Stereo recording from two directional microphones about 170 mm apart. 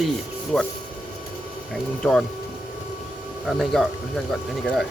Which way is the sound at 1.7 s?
5° left (ahead or behind).